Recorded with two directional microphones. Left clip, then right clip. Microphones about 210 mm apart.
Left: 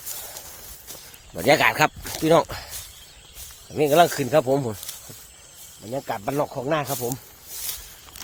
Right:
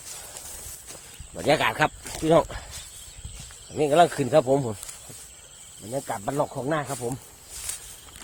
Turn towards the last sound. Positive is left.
turn(degrees=20)  # may be behind; listen again after turning